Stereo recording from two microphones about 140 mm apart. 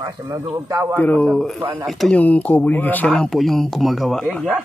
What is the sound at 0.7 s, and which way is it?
Speech, 25° right (ahead or behind).